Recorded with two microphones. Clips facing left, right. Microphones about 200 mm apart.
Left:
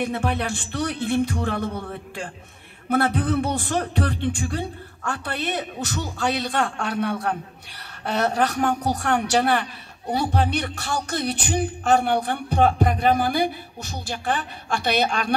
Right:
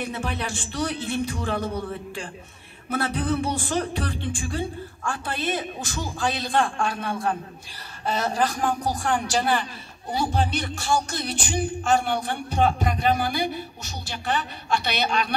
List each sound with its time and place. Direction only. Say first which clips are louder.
0.0 s a man's voice: left 5 dB; 60° left (ahead or behind)